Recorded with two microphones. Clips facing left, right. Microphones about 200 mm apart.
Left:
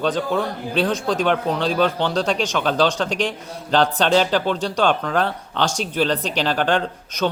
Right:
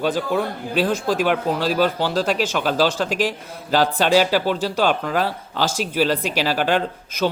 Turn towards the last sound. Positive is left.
turn(degrees=-5)  # may be behind; listen again after turning